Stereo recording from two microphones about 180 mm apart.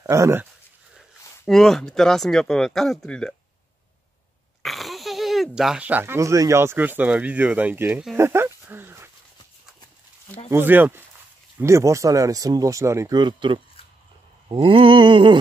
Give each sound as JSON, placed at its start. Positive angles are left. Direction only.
{"t": 0.0, "sound": "speech", "side_deg": -15}
{"t": 0.9, "sound": "speech", "side_deg": 0}
{"t": 4.6, "sound": "speech", "side_deg": 0}
{"t": 10.5, "sound": "speech", "side_deg": -10}